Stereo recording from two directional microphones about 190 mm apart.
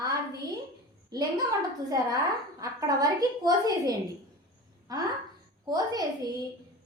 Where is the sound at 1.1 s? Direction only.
20° right (ahead or behind).